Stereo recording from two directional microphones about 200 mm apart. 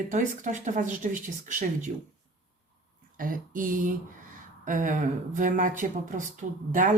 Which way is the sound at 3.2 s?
45° right (ahead or behind).